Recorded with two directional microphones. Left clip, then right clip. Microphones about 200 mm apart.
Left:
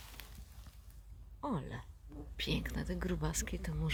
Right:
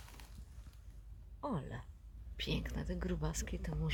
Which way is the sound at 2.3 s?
10° left (ahead or behind).